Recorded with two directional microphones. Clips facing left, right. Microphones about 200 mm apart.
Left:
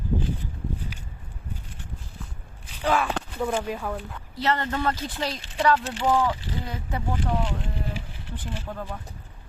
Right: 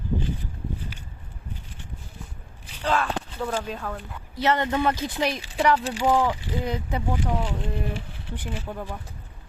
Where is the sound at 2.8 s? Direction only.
10° left (ahead or behind).